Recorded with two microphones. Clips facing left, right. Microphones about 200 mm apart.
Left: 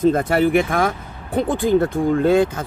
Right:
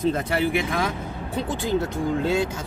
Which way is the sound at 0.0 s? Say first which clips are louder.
Left 7 dB; 50° left (ahead or behind).